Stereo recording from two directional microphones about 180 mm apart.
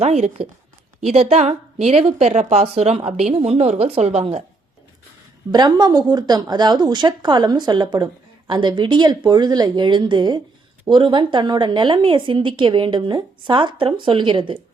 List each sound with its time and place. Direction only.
0.0 s a woman's voice: 35° right (ahead or behind)
5.5 s a woman's voice: 25° right (ahead or behind)